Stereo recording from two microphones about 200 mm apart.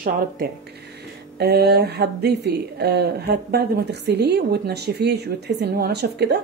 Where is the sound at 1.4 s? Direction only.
55° right (ahead or behind).